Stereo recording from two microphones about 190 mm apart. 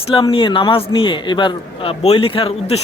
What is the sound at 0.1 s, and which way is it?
Speech, 25° left (ahead or behind).